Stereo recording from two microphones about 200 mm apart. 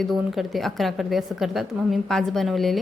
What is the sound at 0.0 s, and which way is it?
A woman's voice, centre (ahead or behind).